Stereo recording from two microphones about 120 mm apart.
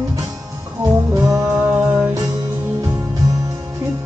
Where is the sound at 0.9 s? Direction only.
30° right (ahead or behind).